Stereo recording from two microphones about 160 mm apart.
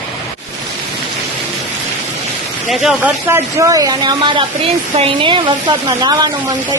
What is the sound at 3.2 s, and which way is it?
A woman's voice, 20° right (ahead or behind).